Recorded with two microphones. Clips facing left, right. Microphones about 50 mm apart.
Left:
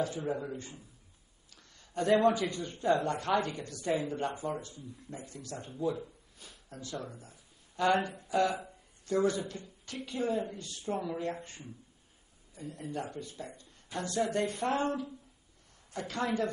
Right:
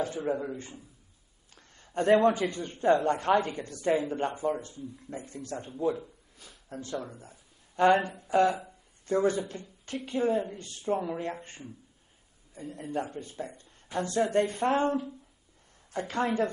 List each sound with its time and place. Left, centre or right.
0.0 s speech: right
1.5 s a man's voice: right
6.7 s speech: right
12.5 s speech: right